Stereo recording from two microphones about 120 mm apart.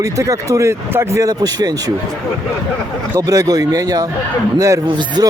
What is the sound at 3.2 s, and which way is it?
Speech, 30° right (ahead or behind).